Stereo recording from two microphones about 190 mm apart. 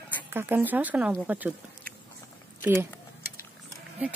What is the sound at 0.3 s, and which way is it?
Speech, 10° right (ahead or behind).